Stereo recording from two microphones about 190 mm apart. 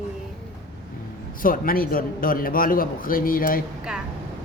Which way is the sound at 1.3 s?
45° left (ahead or behind).